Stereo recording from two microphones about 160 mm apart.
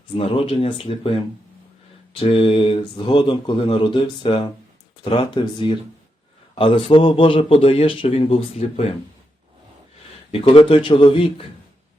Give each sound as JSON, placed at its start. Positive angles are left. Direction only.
{"t": 0.2, "sound": "speech", "side_deg": 35}
{"t": 10.3, "sound": "speech", "side_deg": 35}